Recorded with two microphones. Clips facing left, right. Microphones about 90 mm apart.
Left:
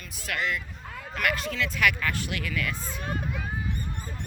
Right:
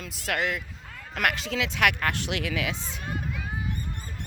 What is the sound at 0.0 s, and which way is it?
Speech, 85° right.